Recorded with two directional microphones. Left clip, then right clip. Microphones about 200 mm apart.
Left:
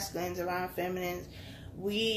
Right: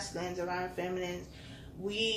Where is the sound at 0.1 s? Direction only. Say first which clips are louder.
Left 1 dB; 45° left (ahead or behind).